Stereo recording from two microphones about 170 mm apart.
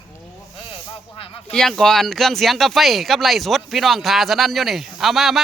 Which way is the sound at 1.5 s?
5° left (ahead or behind).